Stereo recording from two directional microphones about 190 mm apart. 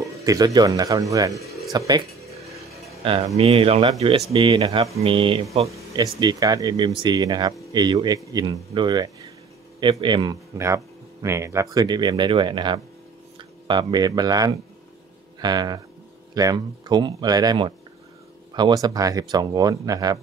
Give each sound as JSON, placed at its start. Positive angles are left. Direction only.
{"t": 0.0, "sound": "speech", "side_deg": -20}